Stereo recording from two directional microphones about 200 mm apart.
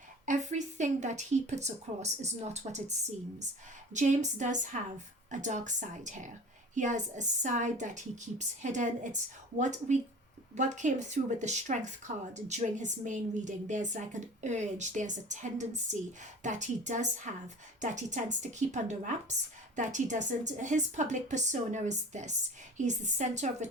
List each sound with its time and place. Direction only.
0.3 s a woman's voice: 35° right (ahead or behind)
3.9 s a woman's voice: 35° right (ahead or behind)